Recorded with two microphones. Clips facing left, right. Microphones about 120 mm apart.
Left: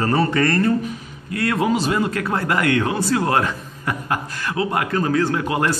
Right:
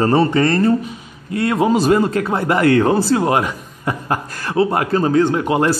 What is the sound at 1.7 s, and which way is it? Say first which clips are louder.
Speech: right 6 dB; 40° right (ahead or behind).